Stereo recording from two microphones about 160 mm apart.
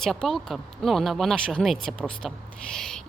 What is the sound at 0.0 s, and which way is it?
Speech, centre (ahead or behind).